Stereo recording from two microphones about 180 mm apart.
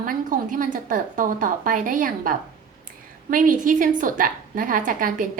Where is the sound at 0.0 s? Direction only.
50° right (ahead or behind).